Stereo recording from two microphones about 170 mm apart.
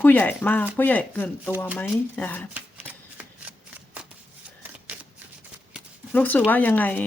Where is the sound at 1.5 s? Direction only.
10° right (ahead or behind).